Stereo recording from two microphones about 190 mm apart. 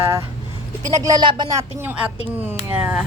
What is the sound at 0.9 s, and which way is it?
Speech, 20° right (ahead or behind).